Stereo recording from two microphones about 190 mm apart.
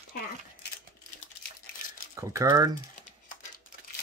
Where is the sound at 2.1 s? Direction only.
15° right (ahead or behind).